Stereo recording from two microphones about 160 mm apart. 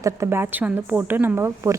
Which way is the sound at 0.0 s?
15° right (ahead or behind).